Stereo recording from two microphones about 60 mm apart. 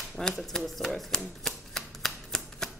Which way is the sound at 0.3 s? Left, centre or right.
Centre.